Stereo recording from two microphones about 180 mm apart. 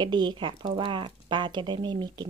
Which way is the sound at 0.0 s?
25° right (ahead or behind).